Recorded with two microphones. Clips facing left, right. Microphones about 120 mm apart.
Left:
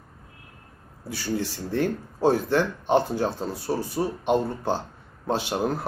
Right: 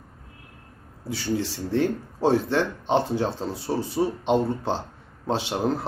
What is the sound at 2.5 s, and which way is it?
Speech, 25° right (ahead or behind).